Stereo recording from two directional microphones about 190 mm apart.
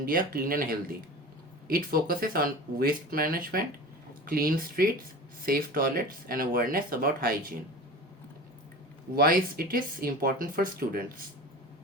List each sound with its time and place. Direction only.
0.0 s speech: 50° right (ahead or behind)
9.1 s speech: 50° right (ahead or behind)